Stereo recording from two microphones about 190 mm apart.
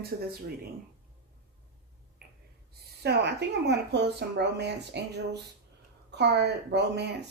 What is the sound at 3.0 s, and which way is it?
Speech, 65° right (ahead or behind).